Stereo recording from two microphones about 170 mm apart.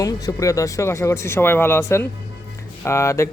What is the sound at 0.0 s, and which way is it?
A man's voice, 20° left (ahead or behind).